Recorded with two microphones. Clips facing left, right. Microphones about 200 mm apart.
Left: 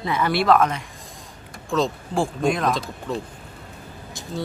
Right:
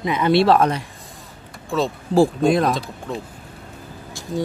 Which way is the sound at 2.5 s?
35° right (ahead or behind).